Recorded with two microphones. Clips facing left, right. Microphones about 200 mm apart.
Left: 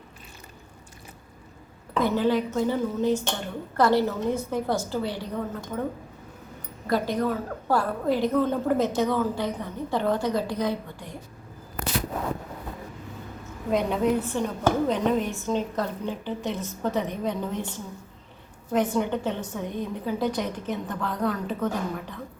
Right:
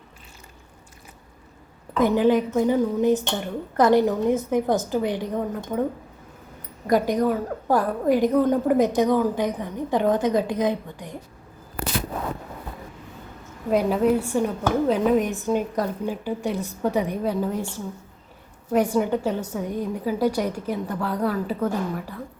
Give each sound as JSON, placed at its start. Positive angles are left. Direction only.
{"t": 2.0, "sound": "a woman's voice", "side_deg": -15}
{"t": 6.8, "sound": "a woman's voice", "side_deg": -15}
{"t": 13.7, "sound": "a woman's voice", "side_deg": -5}